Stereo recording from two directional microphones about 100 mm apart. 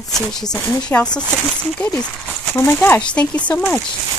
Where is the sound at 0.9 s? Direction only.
20° left (ahead or behind).